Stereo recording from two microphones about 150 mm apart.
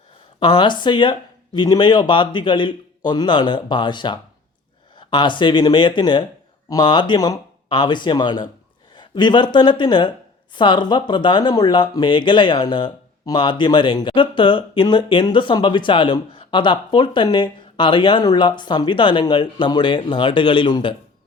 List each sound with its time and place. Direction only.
0.3 s a woman's voice: 30° left (ahead or behind)